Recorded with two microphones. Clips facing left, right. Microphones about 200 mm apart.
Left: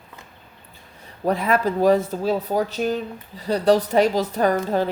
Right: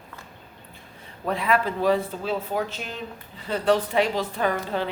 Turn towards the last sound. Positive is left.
turn(degrees=40)  # may be behind; listen again after turning